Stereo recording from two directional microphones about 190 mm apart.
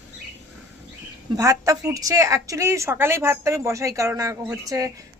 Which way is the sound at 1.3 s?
20° right (ahead or behind).